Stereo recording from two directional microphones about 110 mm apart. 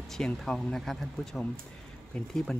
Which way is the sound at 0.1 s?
5° left (ahead or behind).